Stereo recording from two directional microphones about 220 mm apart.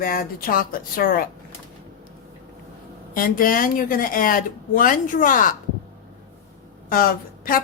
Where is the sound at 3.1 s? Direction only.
40° left (ahead or behind).